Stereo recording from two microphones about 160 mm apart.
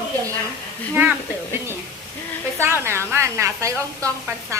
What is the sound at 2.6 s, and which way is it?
A woman's voice, 15° right (ahead or behind).